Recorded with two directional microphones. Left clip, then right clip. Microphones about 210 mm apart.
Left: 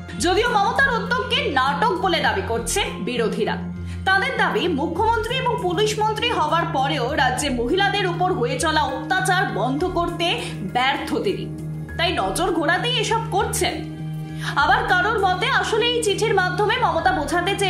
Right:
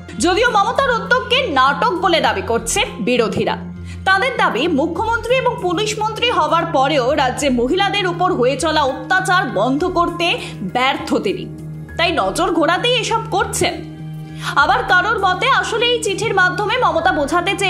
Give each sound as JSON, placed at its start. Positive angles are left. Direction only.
{"t": 0.2, "sound": "a woman's voice", "side_deg": -25}